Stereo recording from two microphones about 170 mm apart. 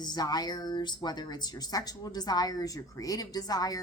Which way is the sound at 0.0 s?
25° left (ahead or behind).